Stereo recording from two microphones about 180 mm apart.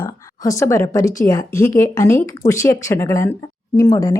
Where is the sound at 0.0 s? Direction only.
15° left (ahead or behind).